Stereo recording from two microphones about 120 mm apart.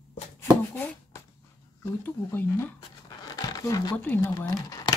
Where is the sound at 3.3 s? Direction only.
35° left (ahead or behind).